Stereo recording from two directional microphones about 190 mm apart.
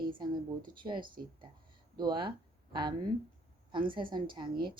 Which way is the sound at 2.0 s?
25° right (ahead or behind).